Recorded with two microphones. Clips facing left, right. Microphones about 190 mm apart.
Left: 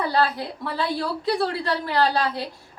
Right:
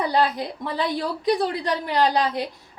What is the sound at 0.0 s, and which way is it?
A woman's voice, 20° right (ahead or behind).